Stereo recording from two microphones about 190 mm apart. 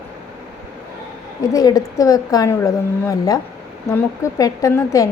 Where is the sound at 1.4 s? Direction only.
20° left (ahead or behind).